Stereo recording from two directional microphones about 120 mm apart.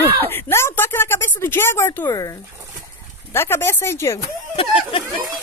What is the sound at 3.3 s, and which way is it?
Speech, 20° left (ahead or behind).